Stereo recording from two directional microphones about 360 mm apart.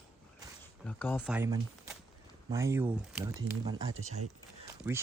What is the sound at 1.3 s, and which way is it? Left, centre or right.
Speech, centre.